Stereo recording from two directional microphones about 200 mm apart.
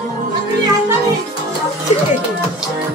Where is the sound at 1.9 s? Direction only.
35° left (ahead or behind).